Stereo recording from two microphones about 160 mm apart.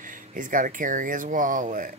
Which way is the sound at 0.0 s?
55° right (ahead or behind).